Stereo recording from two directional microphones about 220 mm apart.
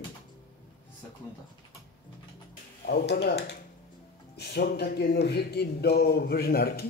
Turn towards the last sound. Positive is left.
turn(degrees=45)  # may be behind; listen again after turning